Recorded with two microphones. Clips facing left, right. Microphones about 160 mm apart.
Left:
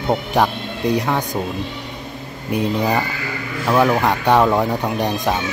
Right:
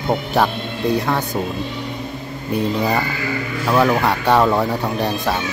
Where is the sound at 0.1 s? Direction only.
15° left (ahead or behind).